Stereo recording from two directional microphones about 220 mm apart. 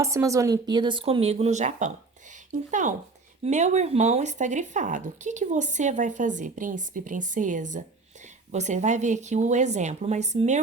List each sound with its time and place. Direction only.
0.0 s speech: 15° right (ahead or behind); by 10.6 s 30° right (ahead or behind)